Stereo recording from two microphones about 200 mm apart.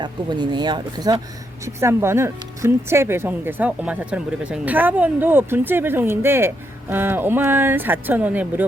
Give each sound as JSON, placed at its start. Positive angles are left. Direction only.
{"t": 0.0, "sound": "speech", "side_deg": -20}